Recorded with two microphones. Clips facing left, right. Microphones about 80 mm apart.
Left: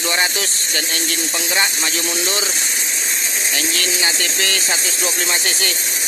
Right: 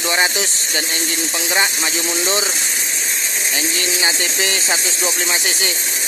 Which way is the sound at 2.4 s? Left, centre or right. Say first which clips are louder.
Right 1 dB; centre.